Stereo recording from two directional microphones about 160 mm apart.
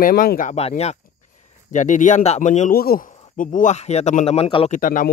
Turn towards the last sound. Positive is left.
turn(degrees=55)  # may be behind; listen again after turning